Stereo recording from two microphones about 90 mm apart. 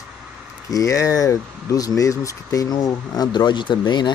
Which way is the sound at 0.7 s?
35° left (ahead or behind).